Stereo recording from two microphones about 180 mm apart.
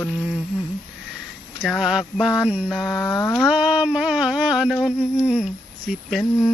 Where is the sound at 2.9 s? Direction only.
15° left (ahead or behind).